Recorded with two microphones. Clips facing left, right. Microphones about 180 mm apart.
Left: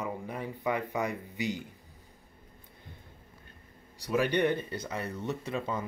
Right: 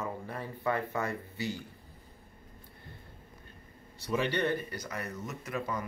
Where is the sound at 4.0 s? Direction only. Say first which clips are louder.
Left 3 dB; 10° left (ahead or behind).